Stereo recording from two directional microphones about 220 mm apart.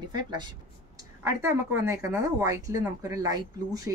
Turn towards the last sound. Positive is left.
turn(degrees=-15)  # may be behind; listen again after turning